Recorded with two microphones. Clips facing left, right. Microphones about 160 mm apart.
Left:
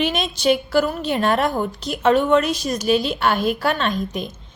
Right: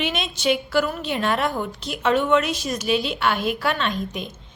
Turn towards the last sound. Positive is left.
turn(degrees=40)  # may be behind; listen again after turning